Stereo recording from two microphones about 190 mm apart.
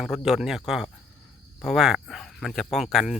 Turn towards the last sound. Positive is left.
turn(degrees=0)  # may be behind; listen again after turning